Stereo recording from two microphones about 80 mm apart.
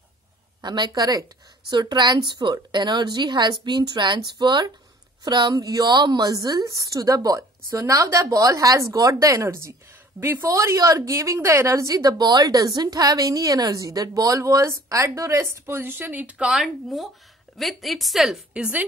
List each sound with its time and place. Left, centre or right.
0.6 s a woman's voice: right
5.5 s a woman's voice: right
10.5 s a woman's voice: right; by 16.4 s centre
16.4 s a woman's voice: centre
18.5 s a woman's voice: centre